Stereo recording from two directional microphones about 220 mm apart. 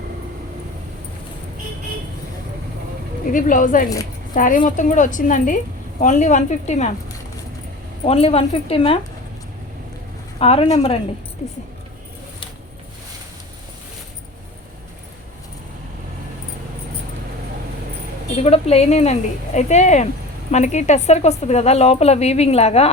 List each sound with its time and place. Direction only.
3.3 s a woman's voice: 35° left (ahead or behind)
8.0 s a woman's voice: 25° left (ahead or behind)
10.3 s a woman's voice: 25° left (ahead or behind)
18.4 s a woman's voice: 30° left (ahead or behind)